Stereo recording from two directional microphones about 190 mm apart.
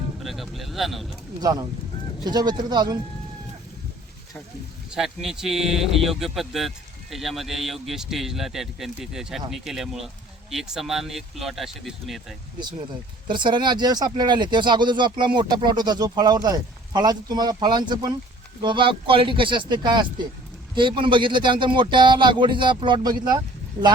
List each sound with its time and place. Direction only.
0.2 s speech: centre (ahead or behind)
1.4 s speech: 20° right (ahead or behind)
4.9 s speech: centre (ahead or behind)
13.2 s speech: 25° right (ahead or behind)